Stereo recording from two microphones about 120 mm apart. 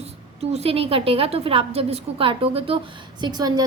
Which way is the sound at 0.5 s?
55° right (ahead or behind).